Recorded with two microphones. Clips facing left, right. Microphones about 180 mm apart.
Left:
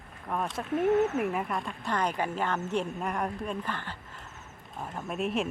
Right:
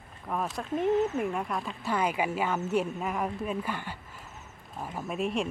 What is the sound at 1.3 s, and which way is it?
Speech, centre (ahead or behind).